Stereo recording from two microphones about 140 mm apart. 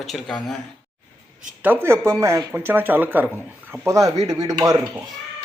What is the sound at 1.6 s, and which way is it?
Speech, 15° right (ahead or behind).